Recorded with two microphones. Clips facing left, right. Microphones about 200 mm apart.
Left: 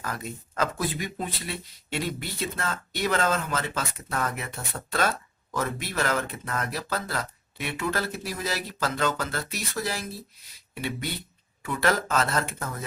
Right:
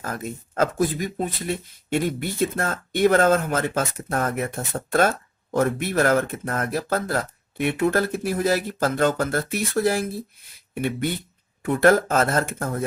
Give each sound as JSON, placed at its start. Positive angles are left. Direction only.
{"t": 0.0, "sound": "speech", "side_deg": -45}